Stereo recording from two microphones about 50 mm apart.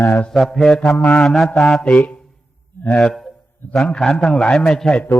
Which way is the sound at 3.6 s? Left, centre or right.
Left.